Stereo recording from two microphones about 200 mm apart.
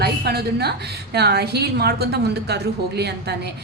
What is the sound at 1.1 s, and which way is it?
A woman's voice, 55° right (ahead or behind).